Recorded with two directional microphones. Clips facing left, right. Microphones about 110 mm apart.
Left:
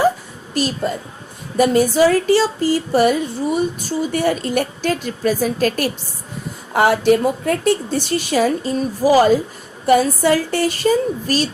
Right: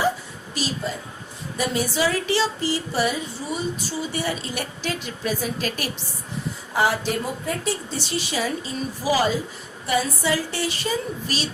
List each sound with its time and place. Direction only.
0.6 s a woman's voice: 50° left (ahead or behind)
6.7 s a woman's voice: 60° left (ahead or behind); by 11.4 s 45° left (ahead or behind)